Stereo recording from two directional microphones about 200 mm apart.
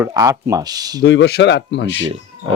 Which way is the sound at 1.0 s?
55° left (ahead or behind).